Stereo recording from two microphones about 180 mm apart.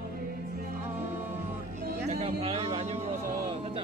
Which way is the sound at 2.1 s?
35° right (ahead or behind).